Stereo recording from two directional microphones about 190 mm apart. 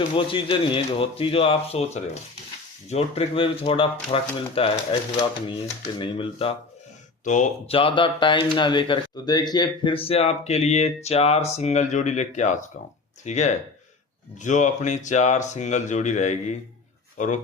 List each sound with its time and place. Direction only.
0.2 s speech: 25° left (ahead or behind)
6.0 s speech: 25° left (ahead or behind)
7.3 s speech: 40° left (ahead or behind)
7.8 s speech: 25° left (ahead or behind)